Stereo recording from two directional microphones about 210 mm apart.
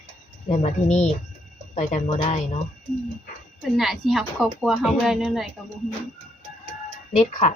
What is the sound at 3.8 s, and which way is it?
Speech, centre (ahead or behind).